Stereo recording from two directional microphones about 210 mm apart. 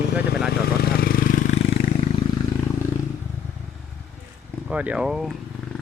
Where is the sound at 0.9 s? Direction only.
45° left (ahead or behind).